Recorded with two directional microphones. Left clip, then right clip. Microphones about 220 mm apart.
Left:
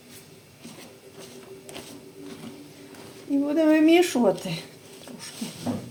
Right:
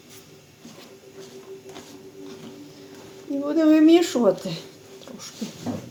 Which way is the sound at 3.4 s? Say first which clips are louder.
Right 3 dB; 20° right (ahead or behind).